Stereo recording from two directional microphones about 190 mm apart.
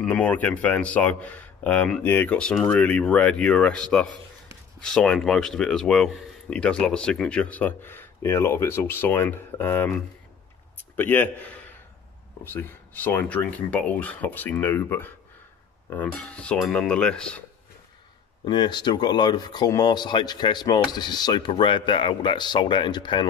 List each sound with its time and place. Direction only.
0.0 s speech: 5° left (ahead or behind)
18.4 s speech: 25° left (ahead or behind)